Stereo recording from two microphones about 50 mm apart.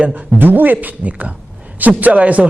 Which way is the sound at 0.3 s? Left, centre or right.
Right.